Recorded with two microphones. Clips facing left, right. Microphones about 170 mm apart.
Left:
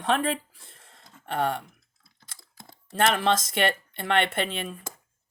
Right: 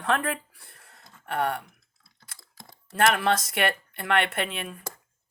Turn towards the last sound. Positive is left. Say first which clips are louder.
# left 2 dB
turn(degrees=30)  # may be behind; listen again after turning